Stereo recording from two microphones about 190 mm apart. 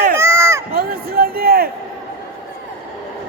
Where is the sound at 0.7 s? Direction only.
50° right (ahead or behind).